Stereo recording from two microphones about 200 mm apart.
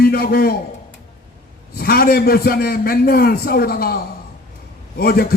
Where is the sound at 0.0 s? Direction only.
50° left (ahead or behind).